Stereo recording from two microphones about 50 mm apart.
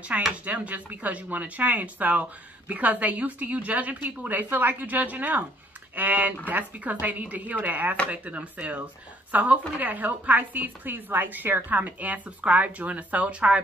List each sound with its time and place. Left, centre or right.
0.1 s a woman's voice: right